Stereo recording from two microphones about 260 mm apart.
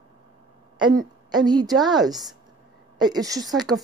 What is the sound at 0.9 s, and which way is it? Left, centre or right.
Speech, centre.